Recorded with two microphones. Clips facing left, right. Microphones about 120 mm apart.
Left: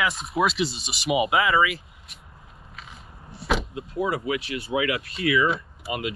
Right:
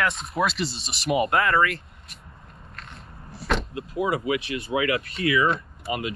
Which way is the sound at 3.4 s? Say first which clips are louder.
Even; centre (ahead or behind).